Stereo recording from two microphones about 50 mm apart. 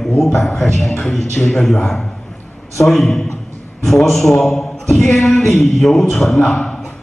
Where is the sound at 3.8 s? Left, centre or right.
Centre.